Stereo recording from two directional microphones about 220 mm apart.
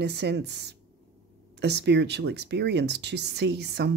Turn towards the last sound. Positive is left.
turn(degrees=-50)  # may be behind; listen again after turning